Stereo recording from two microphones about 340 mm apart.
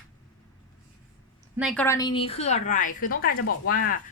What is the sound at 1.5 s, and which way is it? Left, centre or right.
A woman's voice, centre.